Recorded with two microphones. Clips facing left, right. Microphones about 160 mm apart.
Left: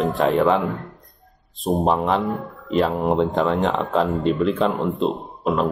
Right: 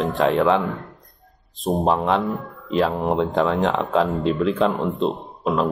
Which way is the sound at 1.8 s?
Centre (ahead or behind).